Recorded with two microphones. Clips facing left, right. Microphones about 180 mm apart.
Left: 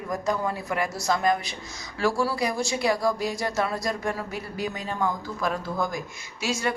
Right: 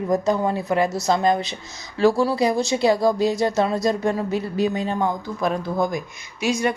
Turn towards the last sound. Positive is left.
turn(degrees=-15)  # may be behind; listen again after turning